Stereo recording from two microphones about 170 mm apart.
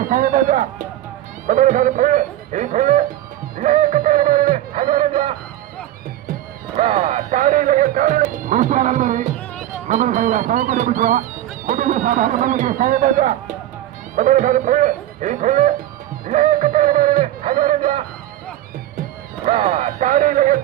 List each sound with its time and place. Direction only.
0.1 s speech: 50° right (ahead or behind)
6.7 s speech: 35° right (ahead or behind)
16.2 s music: 50° right (ahead or behind)
19.5 s speech: 40° right (ahead or behind)